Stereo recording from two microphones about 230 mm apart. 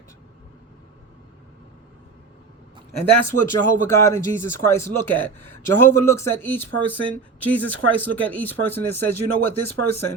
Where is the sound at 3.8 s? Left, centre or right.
Centre.